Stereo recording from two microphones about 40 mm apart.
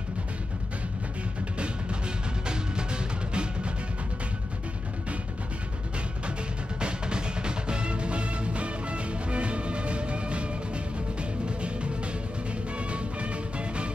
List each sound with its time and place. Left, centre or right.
2.4 s music: right
6.8 s music: right